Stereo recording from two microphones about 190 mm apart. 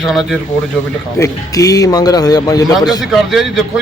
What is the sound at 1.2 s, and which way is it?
A man's voice, 20° left (ahead or behind).